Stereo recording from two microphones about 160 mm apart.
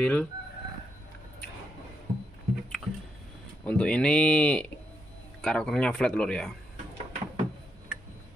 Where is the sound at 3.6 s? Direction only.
5° left (ahead or behind).